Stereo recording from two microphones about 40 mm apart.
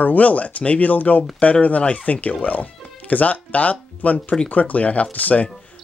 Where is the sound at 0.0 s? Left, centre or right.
Left.